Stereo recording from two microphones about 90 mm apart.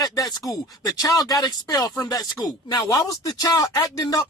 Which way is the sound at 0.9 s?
40° left (ahead or behind).